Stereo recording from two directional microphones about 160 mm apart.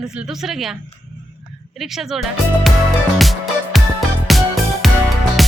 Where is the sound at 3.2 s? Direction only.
Centre (ahead or behind).